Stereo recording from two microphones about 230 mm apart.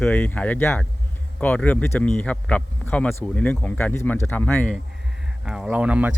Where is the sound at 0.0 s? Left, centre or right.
Centre.